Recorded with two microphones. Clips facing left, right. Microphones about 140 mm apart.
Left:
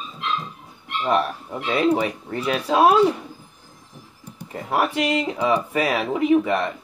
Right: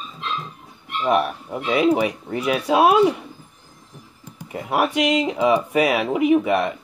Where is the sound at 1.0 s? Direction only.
10° right (ahead or behind).